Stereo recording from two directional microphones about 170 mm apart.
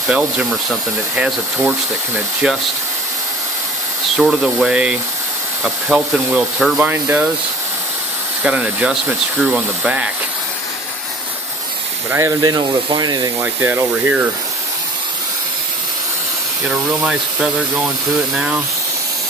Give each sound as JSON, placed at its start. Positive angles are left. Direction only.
{"t": 0.1, "sound": "speech", "side_deg": -5}
{"t": 4.2, "sound": "speech", "side_deg": 0}
{"t": 8.5, "sound": "speech", "side_deg": -5}
{"t": 12.4, "sound": "speech", "side_deg": -25}
{"t": 17.0, "sound": "speech", "side_deg": -5}